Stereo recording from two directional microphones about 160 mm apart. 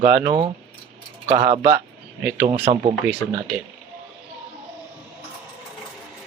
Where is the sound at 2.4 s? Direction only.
35° right (ahead or behind).